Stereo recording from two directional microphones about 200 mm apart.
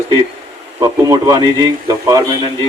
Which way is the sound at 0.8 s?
20° right (ahead or behind).